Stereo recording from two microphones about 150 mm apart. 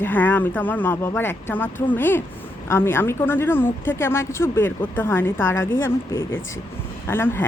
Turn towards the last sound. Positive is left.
turn(degrees=15)  # may be behind; listen again after turning